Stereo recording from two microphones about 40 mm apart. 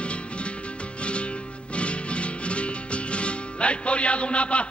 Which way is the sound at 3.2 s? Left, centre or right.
Left.